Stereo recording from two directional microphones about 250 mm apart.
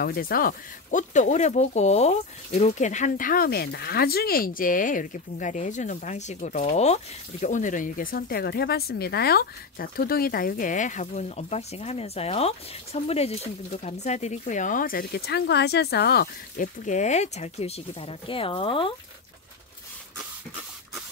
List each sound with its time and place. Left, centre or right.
0.0 s speech: left